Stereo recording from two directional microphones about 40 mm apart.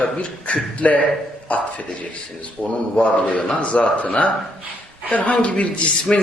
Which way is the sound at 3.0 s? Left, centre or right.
Left.